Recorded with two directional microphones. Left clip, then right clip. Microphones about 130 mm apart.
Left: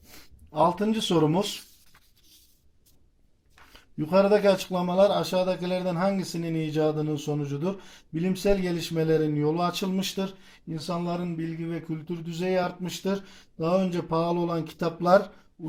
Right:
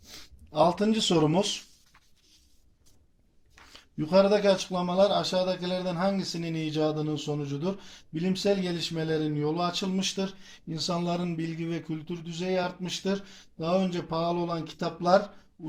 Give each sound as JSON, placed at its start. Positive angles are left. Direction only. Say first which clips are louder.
{"t": 0.5, "sound": "speech", "louder": "even", "side_deg": 5}
{"t": 3.7, "sound": "a sound", "louder": "left 1 dB", "side_deg": 5}
{"t": 4.1, "sound": "speech", "louder": "left 1 dB", "side_deg": 25}
{"t": 4.5, "sound": "speech", "louder": "left 2 dB", "side_deg": 45}
{"t": 6.3, "sound": "speech", "louder": "left 3 dB", "side_deg": 25}
{"t": 10.7, "sound": "speech", "louder": "right 1 dB", "side_deg": 5}
{"t": 12.0, "sound": "speech", "louder": "left 6 dB", "side_deg": 50}